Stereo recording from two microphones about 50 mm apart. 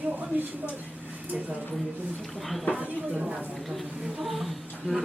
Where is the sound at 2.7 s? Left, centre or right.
Right.